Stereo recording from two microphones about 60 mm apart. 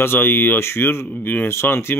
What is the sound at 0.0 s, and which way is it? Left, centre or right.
Speech, left.